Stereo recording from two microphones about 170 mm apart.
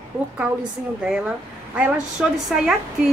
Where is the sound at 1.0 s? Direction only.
5° right (ahead or behind).